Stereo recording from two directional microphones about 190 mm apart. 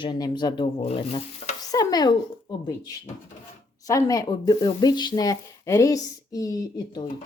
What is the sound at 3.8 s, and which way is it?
Speech, 20° left (ahead or behind).